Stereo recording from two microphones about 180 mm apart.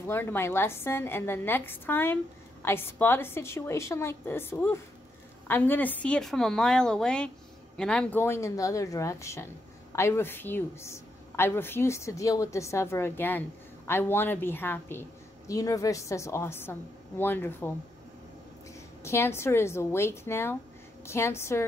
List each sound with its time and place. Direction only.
0.1 s a woman's voice: 15° left (ahead or behind)
19.0 s a woman's voice: 15° left (ahead or behind)